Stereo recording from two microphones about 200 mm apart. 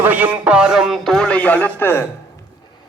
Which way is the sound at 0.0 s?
10° right (ahead or behind).